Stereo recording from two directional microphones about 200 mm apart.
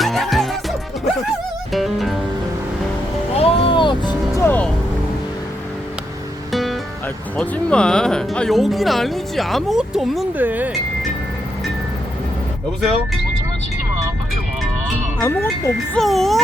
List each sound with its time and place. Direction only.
0.0 s music: centre (ahead or behind)
3.3 s vehicle: 30° left (ahead or behind)
4.4 s music: 5° left (ahead or behind)
6.5 s music: centre (ahead or behind)
7.3 s speech: 5° left (ahead or behind)
15.2 s wind chime: 10° left (ahead or behind)
16.0 s speech: centre (ahead or behind)